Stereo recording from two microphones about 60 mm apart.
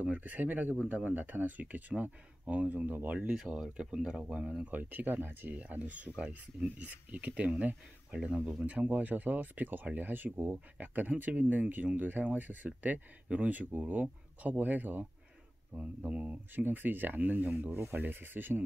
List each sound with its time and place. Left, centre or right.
0.0 s speech: right
3.3 s speech: centre; by 18.6 s right